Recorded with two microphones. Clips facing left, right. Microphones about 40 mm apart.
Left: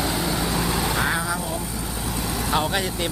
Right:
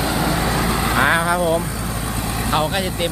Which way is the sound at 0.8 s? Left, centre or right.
Right.